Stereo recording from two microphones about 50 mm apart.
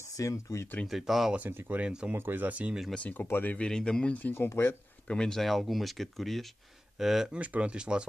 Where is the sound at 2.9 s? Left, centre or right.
Left.